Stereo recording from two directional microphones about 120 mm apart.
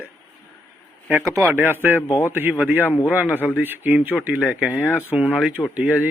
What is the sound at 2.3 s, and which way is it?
Speech, 15° right (ahead or behind).